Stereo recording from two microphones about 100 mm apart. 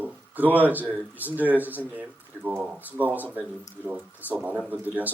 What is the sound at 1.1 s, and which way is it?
Speech, 15° right (ahead or behind).